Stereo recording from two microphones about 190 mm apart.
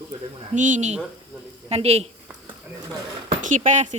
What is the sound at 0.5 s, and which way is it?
A woman's voice, 40° right (ahead or behind).